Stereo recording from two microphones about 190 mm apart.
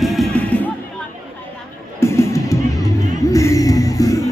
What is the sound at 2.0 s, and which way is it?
Music, 15° left (ahead or behind).